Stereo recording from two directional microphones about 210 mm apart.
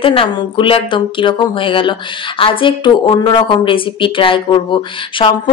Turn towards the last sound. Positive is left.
turn(degrees=25)  # may be behind; listen again after turning